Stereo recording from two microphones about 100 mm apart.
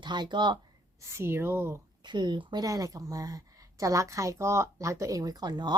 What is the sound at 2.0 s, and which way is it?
A woman's voice, 50° right (ahead or behind).